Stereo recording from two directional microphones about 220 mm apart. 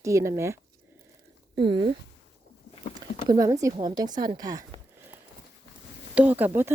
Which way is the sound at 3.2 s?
15° right (ahead or behind).